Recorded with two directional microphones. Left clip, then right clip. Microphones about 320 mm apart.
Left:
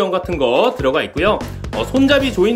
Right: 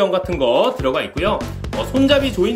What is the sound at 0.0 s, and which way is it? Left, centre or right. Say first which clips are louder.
Speech: even; centre.